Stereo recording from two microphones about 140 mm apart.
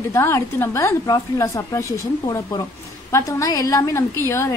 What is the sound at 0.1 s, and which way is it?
A woman's voice, 15° left (ahead or behind).